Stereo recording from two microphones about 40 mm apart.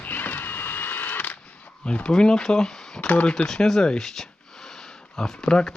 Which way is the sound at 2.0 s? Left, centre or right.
Centre.